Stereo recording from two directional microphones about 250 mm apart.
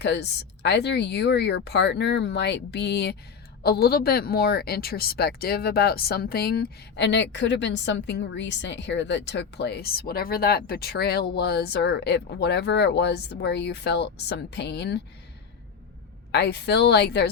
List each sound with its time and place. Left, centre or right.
0.0 s a woman's voice: left
16.3 s a woman's voice: left